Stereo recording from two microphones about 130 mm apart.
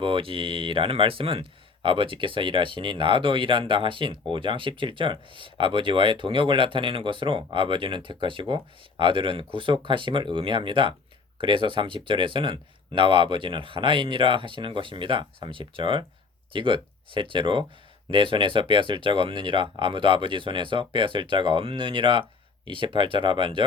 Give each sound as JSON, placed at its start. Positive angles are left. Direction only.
{"t": 0.0, "sound": "speech", "side_deg": -45}